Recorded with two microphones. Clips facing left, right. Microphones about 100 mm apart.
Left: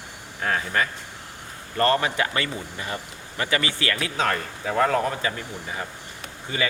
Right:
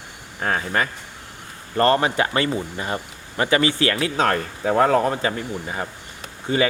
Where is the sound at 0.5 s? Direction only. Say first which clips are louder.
Right 2 dB; 25° right (ahead or behind).